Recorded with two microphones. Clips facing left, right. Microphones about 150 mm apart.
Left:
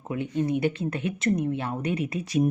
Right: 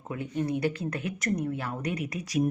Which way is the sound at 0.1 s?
20° left (ahead or behind).